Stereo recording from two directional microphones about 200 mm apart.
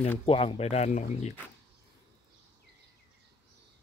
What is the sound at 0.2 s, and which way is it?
Speech, 25° left (ahead or behind).